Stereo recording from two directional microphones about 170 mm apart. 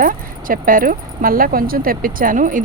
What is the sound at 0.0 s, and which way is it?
Speech, 55° right (ahead or behind).